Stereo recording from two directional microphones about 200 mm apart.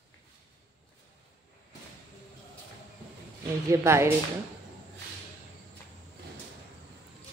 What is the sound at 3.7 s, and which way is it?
Speech, 15° right (ahead or behind).